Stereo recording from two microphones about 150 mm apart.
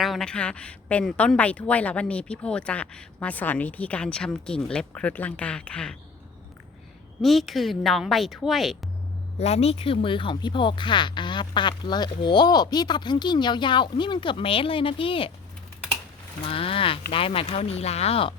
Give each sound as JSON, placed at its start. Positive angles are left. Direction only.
{"t": 0.0, "sound": "a woman's voice", "side_deg": 0}
{"t": 7.2, "sound": "speech", "side_deg": 0}
{"t": 9.4, "sound": "speech", "side_deg": 45}
{"t": 16.4, "sound": "speech", "side_deg": 40}